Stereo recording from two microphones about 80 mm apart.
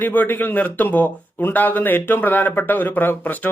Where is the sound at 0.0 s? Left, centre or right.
Left.